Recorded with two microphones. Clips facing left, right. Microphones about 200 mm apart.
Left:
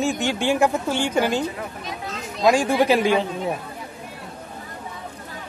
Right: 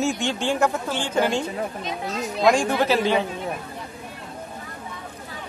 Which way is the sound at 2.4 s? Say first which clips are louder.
Left 2 dB; 5° left (ahead or behind).